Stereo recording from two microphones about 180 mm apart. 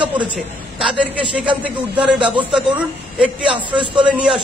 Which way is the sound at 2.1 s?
25° right (ahead or behind).